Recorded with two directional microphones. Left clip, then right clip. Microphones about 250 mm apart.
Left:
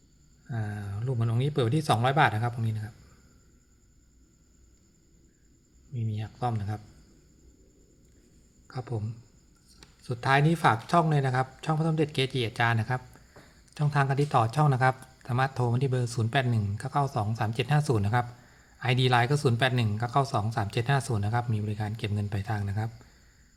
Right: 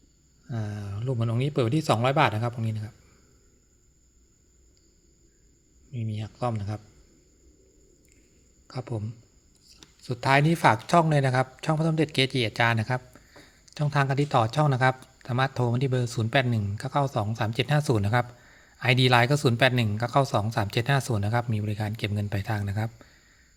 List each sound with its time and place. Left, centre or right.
0.4 s speech: centre
6.0 s a sound: centre
8.6 s a man's voice: centre